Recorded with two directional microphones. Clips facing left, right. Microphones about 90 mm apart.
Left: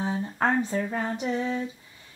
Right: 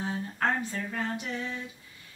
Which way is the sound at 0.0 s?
25° left (ahead or behind).